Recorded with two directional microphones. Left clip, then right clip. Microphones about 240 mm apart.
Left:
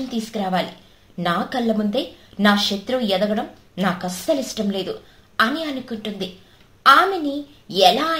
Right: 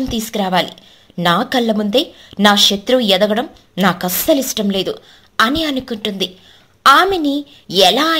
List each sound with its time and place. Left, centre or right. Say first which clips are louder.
0.1 s a woman's voice: right 5 dB; right